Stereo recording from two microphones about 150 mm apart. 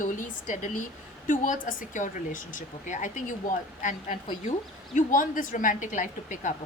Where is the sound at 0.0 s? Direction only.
55° left (ahead or behind).